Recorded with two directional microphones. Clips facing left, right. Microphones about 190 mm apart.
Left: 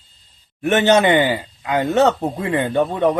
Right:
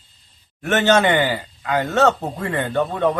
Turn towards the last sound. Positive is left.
turn(degrees=15)  # may be behind; listen again after turning